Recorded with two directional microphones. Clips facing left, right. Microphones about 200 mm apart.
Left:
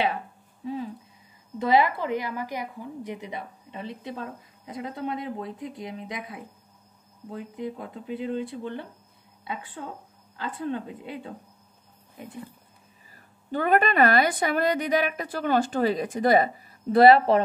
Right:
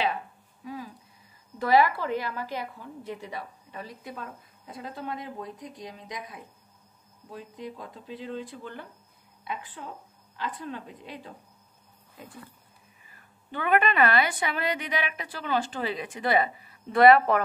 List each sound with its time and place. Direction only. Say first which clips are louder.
0.7 s a woman's voice: left 7 dB; 25° left (ahead or behind)
13.1 s a woman's voice: left 8 dB; 40° left (ahead or behind)